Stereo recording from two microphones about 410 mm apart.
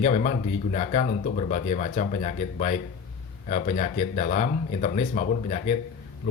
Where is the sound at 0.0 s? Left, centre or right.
Centre.